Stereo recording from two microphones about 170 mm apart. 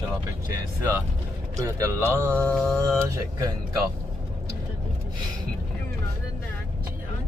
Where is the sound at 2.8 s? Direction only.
15° right (ahead or behind).